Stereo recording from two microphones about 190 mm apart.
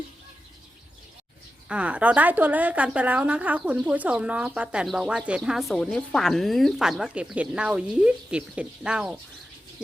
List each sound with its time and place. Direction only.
1.6 s a woman's voice: 5° right (ahead or behind)